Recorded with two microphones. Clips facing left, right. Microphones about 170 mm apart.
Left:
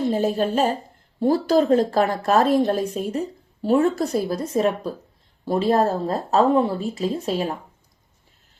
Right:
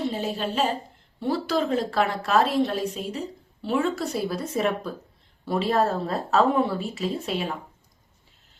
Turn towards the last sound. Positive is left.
turn(degrees=40)  # may be behind; listen again after turning